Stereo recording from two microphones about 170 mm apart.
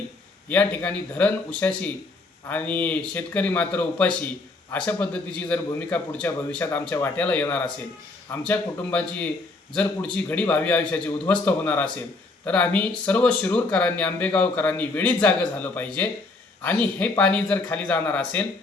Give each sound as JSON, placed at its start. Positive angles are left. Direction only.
{"t": 0.4, "sound": "speech", "side_deg": 10}
{"t": 10.2, "sound": "speech", "side_deg": 10}